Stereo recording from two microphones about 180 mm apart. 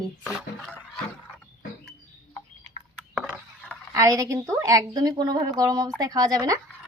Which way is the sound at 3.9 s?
20° right (ahead or behind).